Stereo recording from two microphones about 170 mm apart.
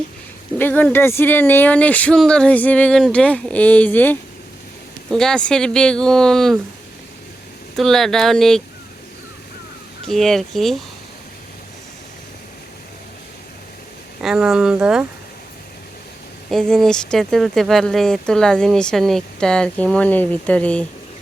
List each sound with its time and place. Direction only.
0.6 s speech: 10° left (ahead or behind)
7.8 s speech: centre (ahead or behind)
10.1 s speech: centre (ahead or behind)
14.2 s speech: 5° right (ahead or behind)
16.5 s speech: 5° left (ahead or behind)